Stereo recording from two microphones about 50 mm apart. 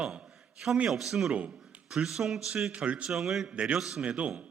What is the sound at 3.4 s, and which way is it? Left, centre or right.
Speech, right.